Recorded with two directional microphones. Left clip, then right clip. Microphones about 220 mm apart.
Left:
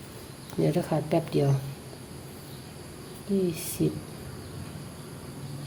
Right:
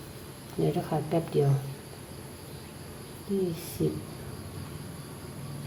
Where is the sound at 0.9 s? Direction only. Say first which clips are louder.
Left 2 dB; 40° left (ahead or behind).